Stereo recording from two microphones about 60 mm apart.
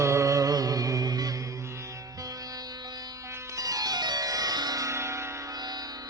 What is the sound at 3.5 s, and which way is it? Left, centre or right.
Music, right.